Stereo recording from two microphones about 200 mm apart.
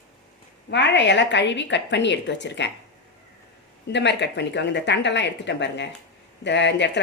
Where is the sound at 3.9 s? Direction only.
60° left (ahead or behind).